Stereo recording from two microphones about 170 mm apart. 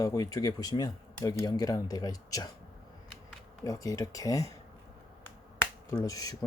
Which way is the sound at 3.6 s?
20° left (ahead or behind).